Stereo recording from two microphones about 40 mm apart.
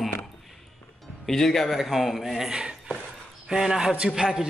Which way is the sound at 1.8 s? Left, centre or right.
Centre.